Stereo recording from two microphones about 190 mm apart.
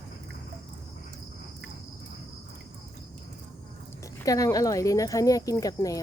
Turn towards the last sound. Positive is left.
turn(degrees=15)  # may be behind; listen again after turning